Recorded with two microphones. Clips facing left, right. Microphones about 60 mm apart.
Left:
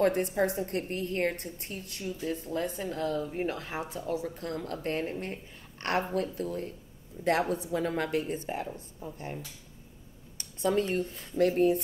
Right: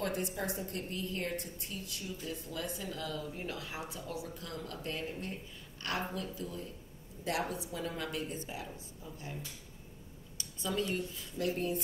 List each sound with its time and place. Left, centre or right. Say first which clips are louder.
0.0 s a woman's voice: left 10 dB; left